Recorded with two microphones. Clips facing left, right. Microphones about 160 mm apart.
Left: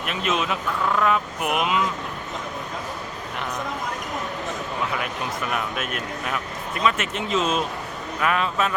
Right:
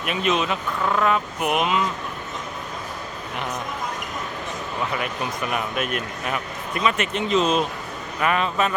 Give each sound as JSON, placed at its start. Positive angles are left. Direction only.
{"t": 0.0, "sound": "speech", "side_deg": 0}
{"t": 4.9, "sound": "speech", "side_deg": 0}